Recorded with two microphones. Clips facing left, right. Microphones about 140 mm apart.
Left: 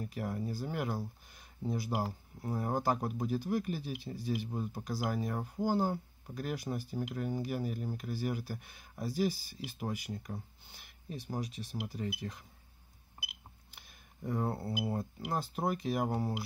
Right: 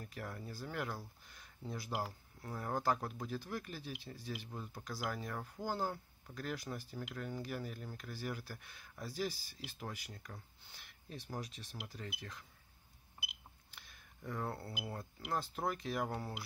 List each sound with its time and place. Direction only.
0.0 s speech: 15° left (ahead or behind)
1.3 s a sound: 15° left (ahead or behind)
2.0 s speech: 20° left (ahead or behind)
14.2 s speech: 25° left (ahead or behind)